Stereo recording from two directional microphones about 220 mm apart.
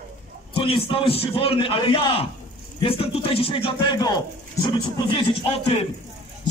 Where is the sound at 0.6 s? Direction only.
25° left (ahead or behind).